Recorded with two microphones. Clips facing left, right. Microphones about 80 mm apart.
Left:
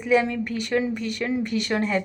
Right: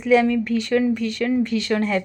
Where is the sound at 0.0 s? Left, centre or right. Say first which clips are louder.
Right 4 dB; centre.